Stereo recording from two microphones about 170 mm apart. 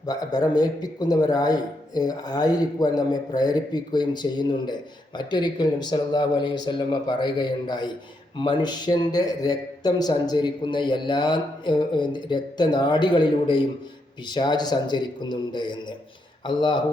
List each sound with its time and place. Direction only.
0.0 s a man's voice: 20° left (ahead or behind)